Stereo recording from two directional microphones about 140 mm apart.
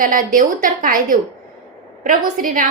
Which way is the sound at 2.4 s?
70° right (ahead or behind).